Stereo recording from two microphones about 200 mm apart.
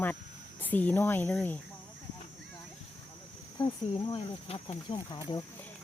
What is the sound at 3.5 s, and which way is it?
Speech, 25° left (ahead or behind).